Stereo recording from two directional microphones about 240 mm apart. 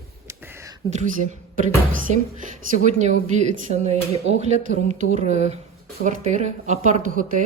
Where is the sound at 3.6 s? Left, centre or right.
Right.